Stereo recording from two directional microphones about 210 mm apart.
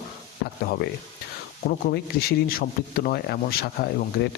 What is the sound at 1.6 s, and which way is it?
Speech, 45° left (ahead or behind).